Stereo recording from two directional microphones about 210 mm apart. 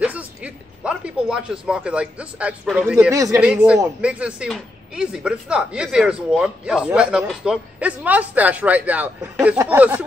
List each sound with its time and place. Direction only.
0.0 s speech: 5° right (ahead or behind)